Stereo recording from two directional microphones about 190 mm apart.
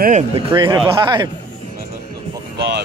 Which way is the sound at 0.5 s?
25° right (ahead or behind).